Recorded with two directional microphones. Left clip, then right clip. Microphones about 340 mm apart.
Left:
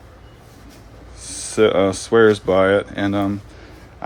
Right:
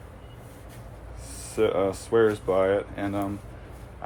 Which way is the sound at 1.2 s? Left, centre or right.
Left.